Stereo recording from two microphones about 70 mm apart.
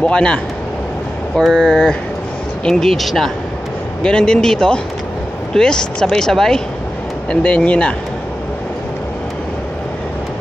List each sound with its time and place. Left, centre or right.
0.0 s speech: centre
1.4 s speech: centre
4.0 s speech: centre